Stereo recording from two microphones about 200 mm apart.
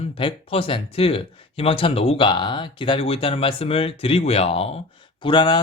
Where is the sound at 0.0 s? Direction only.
25° left (ahead or behind).